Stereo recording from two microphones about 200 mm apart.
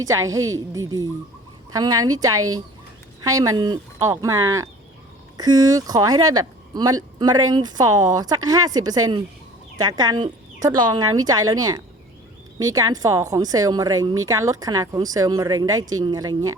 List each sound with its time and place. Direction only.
0.0 s speech: 15° right (ahead or behind)